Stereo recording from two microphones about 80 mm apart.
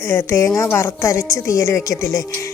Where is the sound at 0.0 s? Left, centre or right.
Left.